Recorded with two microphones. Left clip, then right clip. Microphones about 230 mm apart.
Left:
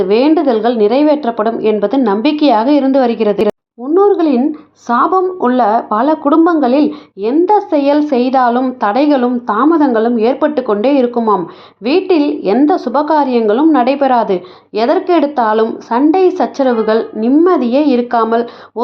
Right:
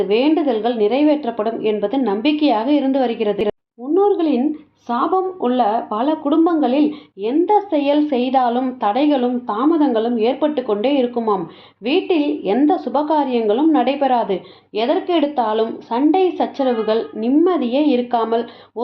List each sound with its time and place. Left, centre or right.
0.0 s a woman's voice: left